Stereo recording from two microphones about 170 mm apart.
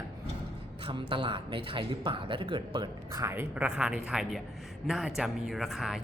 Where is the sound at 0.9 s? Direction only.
30° right (ahead or behind).